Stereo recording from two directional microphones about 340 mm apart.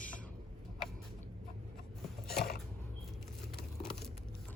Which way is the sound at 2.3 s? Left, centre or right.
Left.